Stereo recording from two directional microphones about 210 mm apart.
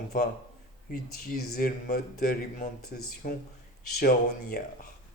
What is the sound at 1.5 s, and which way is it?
Speech, 45° left (ahead or behind).